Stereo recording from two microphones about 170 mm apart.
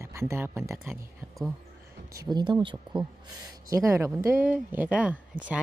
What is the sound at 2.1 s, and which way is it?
Speech, 25° right (ahead or behind).